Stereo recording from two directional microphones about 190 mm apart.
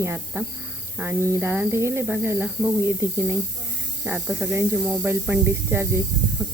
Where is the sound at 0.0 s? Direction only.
10° right (ahead or behind).